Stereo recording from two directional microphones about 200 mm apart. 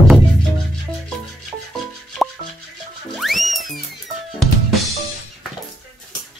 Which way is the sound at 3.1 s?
Centre (ahead or behind).